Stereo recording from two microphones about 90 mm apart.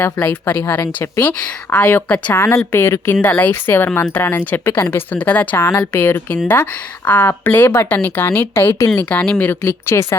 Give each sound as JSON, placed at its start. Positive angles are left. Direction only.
{"t": 0.0, "sound": "speech", "side_deg": 20}
{"t": 9.0, "sound": "speech", "side_deg": 15}
{"t": 9.6, "sound": "speech", "side_deg": 30}